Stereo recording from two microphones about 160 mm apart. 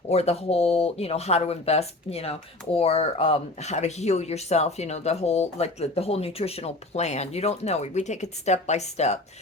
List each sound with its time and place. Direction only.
0.1 s speech: 40° left (ahead or behind)